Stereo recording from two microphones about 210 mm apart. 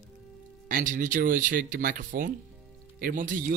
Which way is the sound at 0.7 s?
40° right (ahead or behind).